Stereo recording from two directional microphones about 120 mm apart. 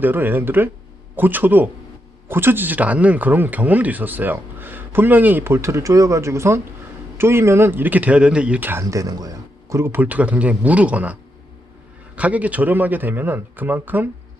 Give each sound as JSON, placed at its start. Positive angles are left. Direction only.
{"t": 0.0, "sound": "speech", "side_deg": -15}
{"t": 8.8, "sound": "speech", "side_deg": -25}